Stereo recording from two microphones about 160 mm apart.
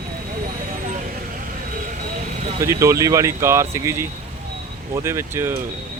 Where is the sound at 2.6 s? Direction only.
20° right (ahead or behind).